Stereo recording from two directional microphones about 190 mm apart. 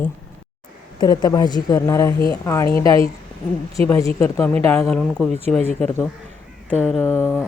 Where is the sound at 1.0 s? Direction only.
20° left (ahead or behind).